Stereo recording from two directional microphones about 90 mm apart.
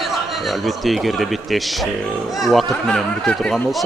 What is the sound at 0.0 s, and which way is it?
A man's voice, centre (ahead or behind).